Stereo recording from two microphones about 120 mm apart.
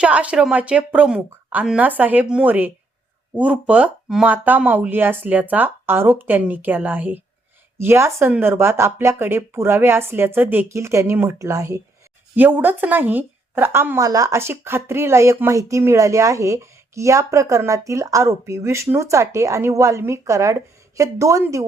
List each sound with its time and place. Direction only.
0.0 s a woman's voice: 10° right (ahead or behind); by 11.8 s 25° right (ahead or behind)
12.4 s a woman's voice: 15° right (ahead or behind)